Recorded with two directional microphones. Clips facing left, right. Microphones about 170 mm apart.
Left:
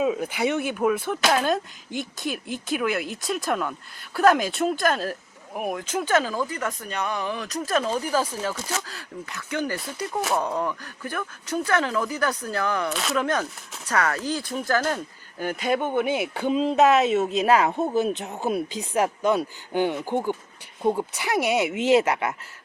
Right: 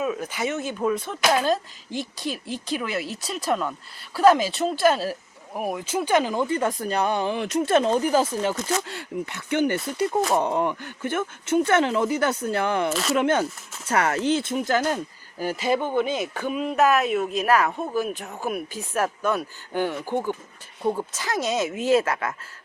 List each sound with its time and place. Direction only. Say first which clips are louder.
0.0 s speech: left 3 dB; 15° left (ahead or behind)
1.3 s speech: right 2 dB; centre (ahead or behind); by 12.9 s 25° right (ahead or behind)
12.9 s speech: right 3 dB; centre (ahead or behind)
13.1 s speech: right 4 dB; 25° right (ahead or behind); by 15.8 s 5° right (ahead or behind)
15.8 s speech: even; 10° left (ahead or behind)